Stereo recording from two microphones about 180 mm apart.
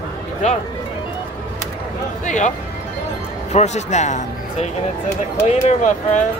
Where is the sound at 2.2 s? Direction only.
40° left (ahead or behind).